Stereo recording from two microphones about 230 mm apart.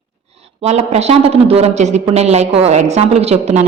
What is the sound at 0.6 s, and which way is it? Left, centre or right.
Speech, right.